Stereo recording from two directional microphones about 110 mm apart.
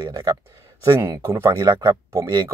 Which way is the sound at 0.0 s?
40° right (ahead or behind).